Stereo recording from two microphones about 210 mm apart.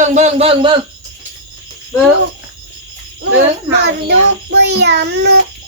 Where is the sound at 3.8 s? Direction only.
55° right (ahead or behind).